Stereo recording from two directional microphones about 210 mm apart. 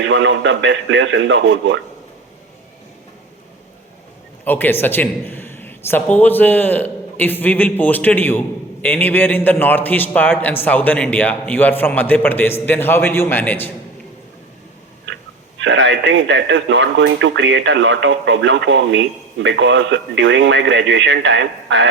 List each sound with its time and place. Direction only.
0.0 s speech: 60° right (ahead or behind)
4.4 s a man's voice: 10° left (ahead or behind)
15.0 s speech: 60° right (ahead or behind)